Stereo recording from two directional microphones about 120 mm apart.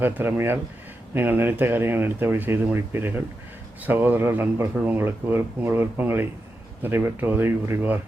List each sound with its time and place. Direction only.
0.0 s speech: 15° right (ahead or behind)